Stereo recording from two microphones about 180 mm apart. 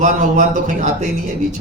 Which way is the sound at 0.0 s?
40° right (ahead or behind).